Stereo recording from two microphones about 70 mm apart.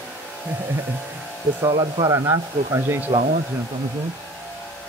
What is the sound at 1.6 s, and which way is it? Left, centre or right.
Speech, right.